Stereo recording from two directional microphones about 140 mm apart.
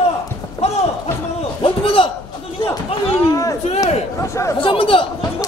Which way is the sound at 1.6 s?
40° left (ahead or behind).